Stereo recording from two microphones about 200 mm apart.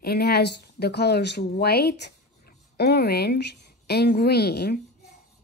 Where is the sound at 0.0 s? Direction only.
55° left (ahead or behind).